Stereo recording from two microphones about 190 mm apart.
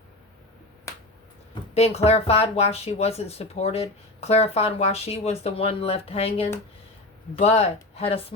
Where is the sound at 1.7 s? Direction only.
35° left (ahead or behind).